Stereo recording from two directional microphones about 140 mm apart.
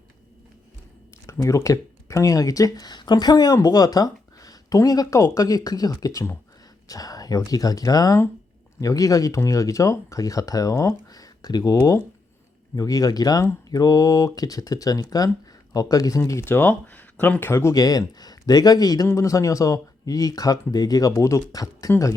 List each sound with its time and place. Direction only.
1.3 s speech: 20° left (ahead or behind)